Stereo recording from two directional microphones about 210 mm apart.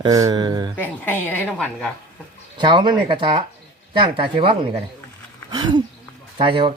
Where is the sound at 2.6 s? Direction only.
20° right (ahead or behind).